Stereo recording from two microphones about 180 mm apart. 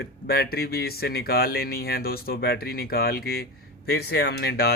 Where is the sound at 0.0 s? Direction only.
60° left (ahead or behind).